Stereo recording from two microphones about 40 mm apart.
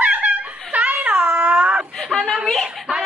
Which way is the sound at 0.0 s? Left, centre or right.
Right.